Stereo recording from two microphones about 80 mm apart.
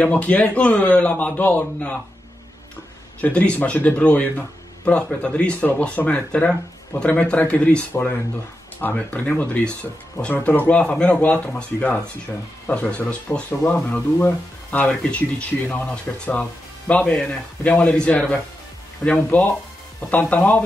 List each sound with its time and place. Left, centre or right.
0.0 s speech: centre
3.2 s speech: centre
8.8 s speech: centre
19.0 s speech: centre
20.1 s speech: centre